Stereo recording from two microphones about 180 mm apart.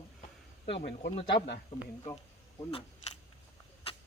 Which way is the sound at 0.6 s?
75° left (ahead or behind).